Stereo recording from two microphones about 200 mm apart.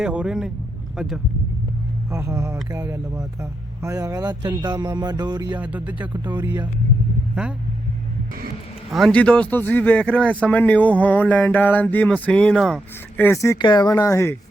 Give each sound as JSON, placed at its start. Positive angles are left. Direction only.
{"t": 0.0, "sound": "speech", "side_deg": -5}
{"t": 2.0, "sound": "speech", "side_deg": -15}
{"t": 5.5, "sound": "speech", "side_deg": -5}
{"t": 8.9, "sound": "speech", "side_deg": 0}